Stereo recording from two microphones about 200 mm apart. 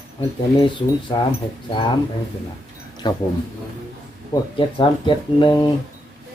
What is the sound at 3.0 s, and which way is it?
Speech, 20° left (ahead or behind).